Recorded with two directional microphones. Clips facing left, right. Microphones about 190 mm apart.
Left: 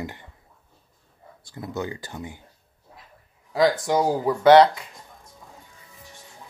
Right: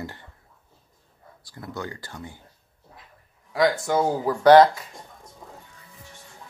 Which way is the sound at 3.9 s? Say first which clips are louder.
Left 1 dB; 15° left (ahead or behind).